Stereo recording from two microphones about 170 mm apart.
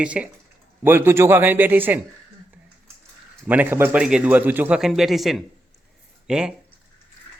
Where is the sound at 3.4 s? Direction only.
10° right (ahead or behind).